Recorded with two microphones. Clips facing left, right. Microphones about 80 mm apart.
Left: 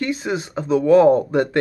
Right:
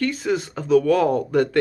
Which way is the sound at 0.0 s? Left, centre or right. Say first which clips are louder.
Right 1 dB; centre.